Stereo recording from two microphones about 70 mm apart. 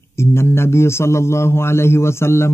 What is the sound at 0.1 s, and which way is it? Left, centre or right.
A man's voice, left.